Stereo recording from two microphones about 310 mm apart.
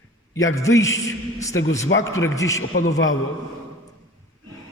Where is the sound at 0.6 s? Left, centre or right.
Centre.